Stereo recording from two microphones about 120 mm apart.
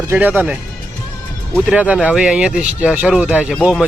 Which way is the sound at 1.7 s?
10° right (ahead or behind).